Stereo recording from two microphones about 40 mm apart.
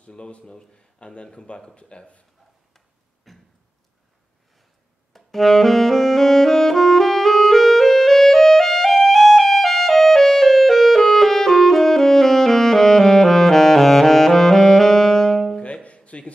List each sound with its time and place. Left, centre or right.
0.0 s speech: left
3.3 s a sound: centre
5.1 s saxophone: centre
15.6 s music: left